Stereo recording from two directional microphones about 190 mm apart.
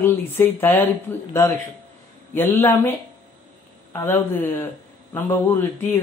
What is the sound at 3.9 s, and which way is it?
Speech, 10° left (ahead or behind).